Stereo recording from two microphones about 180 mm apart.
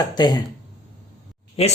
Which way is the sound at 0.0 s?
25° left (ahead or behind).